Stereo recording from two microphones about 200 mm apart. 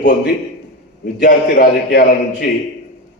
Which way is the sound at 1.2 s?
55° left (ahead or behind).